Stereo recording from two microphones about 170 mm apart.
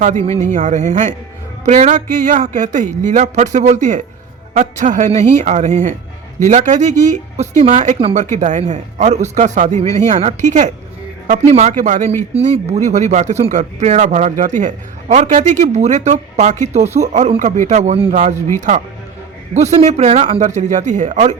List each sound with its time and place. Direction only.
0.0 s speech: 45° right (ahead or behind)
19.6 s speech: 40° right (ahead or behind)